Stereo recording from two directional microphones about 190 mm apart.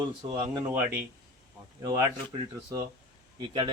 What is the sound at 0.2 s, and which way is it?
Speech, 20° right (ahead or behind).